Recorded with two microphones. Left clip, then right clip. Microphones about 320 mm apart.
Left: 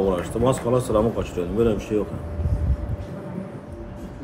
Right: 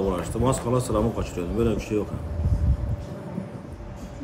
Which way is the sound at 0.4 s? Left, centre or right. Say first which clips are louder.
Left 3 dB; centre.